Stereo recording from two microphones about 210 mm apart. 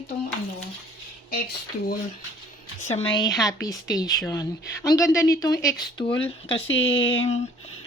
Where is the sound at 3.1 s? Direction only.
20° left (ahead or behind).